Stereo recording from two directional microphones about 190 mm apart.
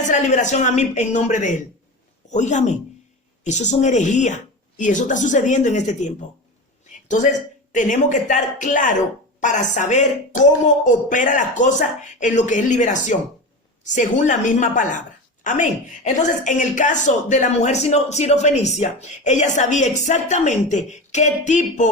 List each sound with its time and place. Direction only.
0.0 s speech: 40° left (ahead or behind)